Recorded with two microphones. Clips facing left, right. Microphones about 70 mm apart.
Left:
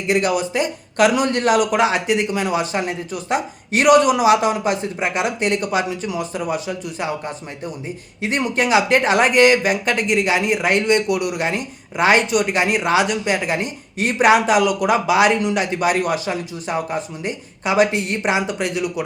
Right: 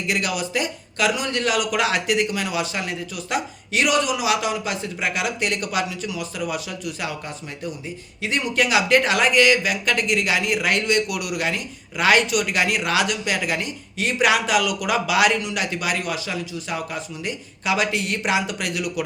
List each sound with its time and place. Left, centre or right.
0.1 s speech: left
0.9 s speech: left